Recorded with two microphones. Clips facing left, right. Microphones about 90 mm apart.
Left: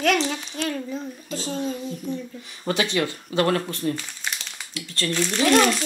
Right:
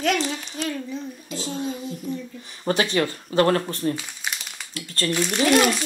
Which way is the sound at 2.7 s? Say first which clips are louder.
Right 2 dB; 40° right (ahead or behind).